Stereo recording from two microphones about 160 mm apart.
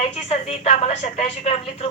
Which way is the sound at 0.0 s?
40° left (ahead or behind).